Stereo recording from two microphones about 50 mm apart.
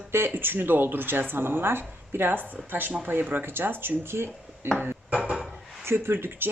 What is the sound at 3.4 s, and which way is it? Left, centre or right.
Speech, right.